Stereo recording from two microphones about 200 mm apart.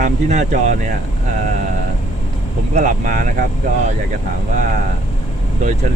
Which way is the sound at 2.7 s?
40° right (ahead or behind).